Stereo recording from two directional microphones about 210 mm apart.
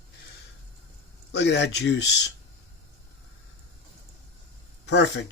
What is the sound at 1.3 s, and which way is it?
Speech, 55° left (ahead or behind).